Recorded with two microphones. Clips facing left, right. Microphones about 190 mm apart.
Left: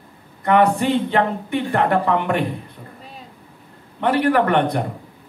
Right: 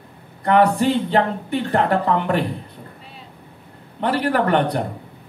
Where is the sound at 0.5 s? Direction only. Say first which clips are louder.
Even; 35° right (ahead or behind).